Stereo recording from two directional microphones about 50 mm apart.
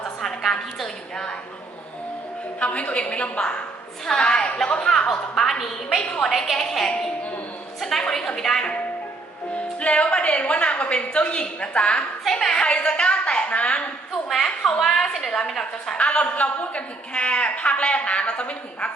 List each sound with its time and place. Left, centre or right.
0.2 s a sound: centre
2.6 s a woman's voice: left; by 6.0 s centre
6.0 s a woman's voice: left
6.2 s a woman's voice: centre
7.8 s music: centre
8.0 s a woman's voice: centre
9.8 s a woman's voice: left
12.2 s a woman's voice: centre; by 13.8 s left
14.1 s a woman's voice: centre
16.0 s a woman's voice: left